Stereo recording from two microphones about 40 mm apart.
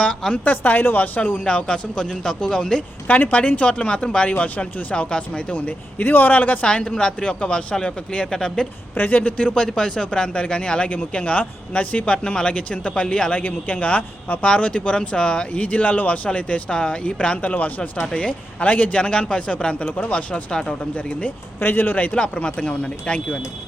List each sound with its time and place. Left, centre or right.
0.4 s speech: left
1.5 s speech: left
3.1 s a man's voice: left
3.7 s speech: left
4.9 s a man's voice: left
6.1 s speech: left
6.7 s speech: left
9.0 s speech: left
9.7 s speech: left
15.5 s a man's voice: left
16.7 s a man's voice: centre
17.4 s a man's voice: left
21.6 s speech: left
22.1 s a man's voice: left